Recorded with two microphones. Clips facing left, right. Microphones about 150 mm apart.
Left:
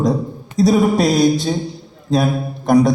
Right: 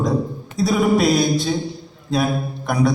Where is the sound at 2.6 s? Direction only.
40° left (ahead or behind).